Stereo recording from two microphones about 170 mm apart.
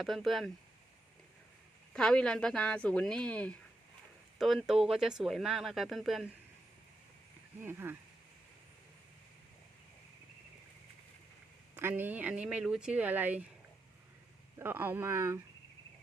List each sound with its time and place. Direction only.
0.0 s speech: centre (ahead or behind)
1.9 s speech: 5° left (ahead or behind)
7.6 s speech: 15° right (ahead or behind)
11.7 s speech: 10° right (ahead or behind)
14.6 s speech: 10° right (ahead or behind)